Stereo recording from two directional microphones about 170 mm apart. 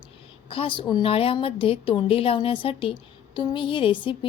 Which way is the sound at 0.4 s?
30° left (ahead or behind).